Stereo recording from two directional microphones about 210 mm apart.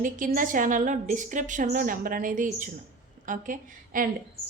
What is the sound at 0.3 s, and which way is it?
A woman's voice, 40° right (ahead or behind).